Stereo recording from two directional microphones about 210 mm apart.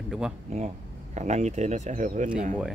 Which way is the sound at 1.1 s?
35° right (ahead or behind).